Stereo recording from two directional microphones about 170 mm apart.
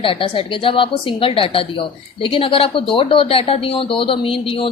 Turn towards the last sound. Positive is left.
turn(degrees=30)  # may be behind; listen again after turning